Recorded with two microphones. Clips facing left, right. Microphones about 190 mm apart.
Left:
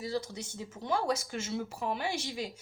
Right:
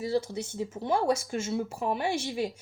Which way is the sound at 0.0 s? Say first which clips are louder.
Right 6 dB; 30° right (ahead or behind).